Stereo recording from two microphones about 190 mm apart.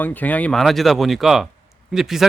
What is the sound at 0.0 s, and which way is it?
A man's voice, 10° left (ahead or behind).